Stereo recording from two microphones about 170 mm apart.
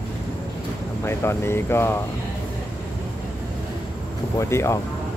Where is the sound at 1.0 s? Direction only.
15° left (ahead or behind).